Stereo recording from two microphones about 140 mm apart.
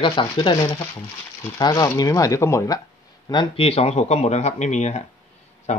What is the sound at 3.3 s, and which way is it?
Speech, 35° left (ahead or behind).